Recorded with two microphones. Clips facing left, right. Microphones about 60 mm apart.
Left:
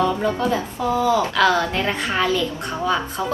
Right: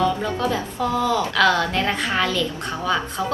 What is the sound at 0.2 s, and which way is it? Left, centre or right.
A woman's voice, centre.